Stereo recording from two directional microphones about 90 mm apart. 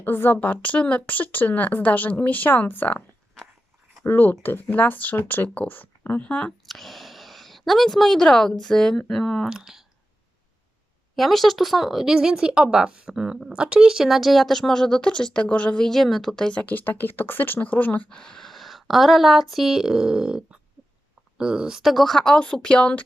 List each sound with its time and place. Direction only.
0.0 s a woman's voice: 20° left (ahead or behind)
4.0 s a woman's voice: 25° left (ahead or behind)
6.7 s a sound: centre (ahead or behind)
8.6 s speech: 5° left (ahead or behind)
11.1 s speech: centre (ahead or behind); by 18.0 s 20° left (ahead or behind)
18.1 s speech: 10° left (ahead or behind)